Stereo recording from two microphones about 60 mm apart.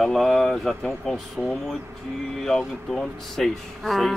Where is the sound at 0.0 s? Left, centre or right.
Centre.